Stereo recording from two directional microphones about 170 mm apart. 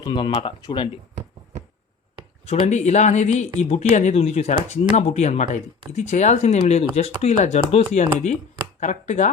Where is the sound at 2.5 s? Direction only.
40° left (ahead or behind).